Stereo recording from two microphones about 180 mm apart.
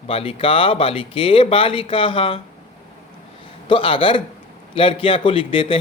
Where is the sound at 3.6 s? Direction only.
30° left (ahead or behind).